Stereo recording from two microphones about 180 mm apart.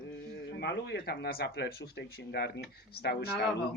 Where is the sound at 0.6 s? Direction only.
65° left (ahead or behind).